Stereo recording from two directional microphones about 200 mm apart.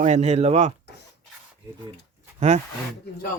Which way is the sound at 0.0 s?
35° right (ahead or behind).